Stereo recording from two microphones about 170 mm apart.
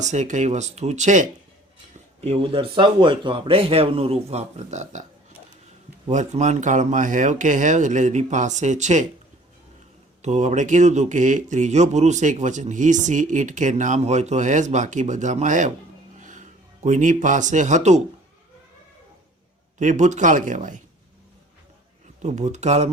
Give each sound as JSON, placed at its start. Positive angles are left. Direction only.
{"t": 0.0, "sound": "speech", "side_deg": -45}
{"t": 2.2, "sound": "a man's voice", "side_deg": -35}
{"t": 6.1, "sound": "speech", "side_deg": -45}
{"t": 10.2, "sound": "speech", "side_deg": -45}
{"t": 19.8, "sound": "speech", "side_deg": -45}
{"t": 22.2, "sound": "speech", "side_deg": -45}